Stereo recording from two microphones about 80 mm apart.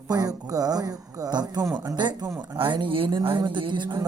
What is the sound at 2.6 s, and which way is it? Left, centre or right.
Speech, right.